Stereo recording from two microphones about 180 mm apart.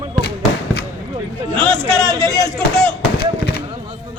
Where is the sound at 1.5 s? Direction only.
5° left (ahead or behind).